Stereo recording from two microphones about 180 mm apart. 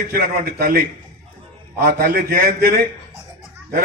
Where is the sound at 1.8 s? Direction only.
60° right (ahead or behind).